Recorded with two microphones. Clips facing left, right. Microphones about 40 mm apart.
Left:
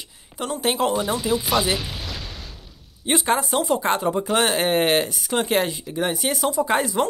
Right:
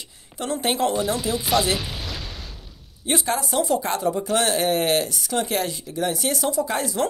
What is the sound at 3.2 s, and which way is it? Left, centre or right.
Speech, left.